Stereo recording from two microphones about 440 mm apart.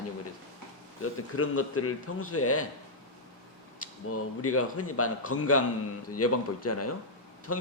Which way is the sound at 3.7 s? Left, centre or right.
Left.